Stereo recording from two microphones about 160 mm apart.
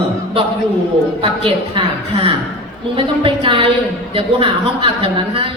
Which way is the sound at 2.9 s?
35° right (ahead or behind).